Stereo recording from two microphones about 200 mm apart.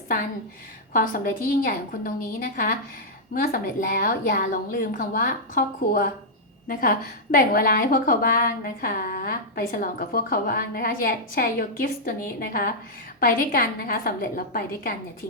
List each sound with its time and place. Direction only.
0.9 s a woman's voice: 45° left (ahead or behind)